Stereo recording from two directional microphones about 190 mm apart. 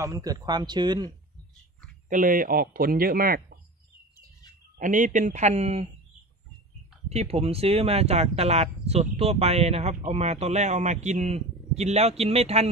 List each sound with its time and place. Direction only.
0.0 s a man's voice: 20° right (ahead or behind)
2.0 s speech: 45° right (ahead or behind)
4.7 s speech: 40° right (ahead or behind)
7.1 s speech: 35° right (ahead or behind)